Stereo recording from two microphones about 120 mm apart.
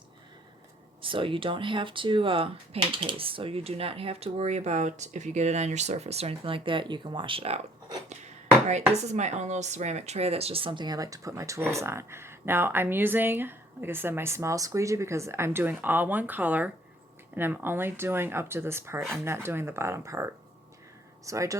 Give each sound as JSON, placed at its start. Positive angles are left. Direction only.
{"t": 1.0, "sound": "speech", "side_deg": -45}
{"t": 8.9, "sound": "speech", "side_deg": -70}